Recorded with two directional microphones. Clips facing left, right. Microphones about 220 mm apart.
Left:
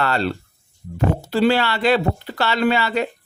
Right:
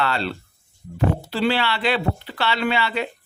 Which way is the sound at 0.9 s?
45° left (ahead or behind).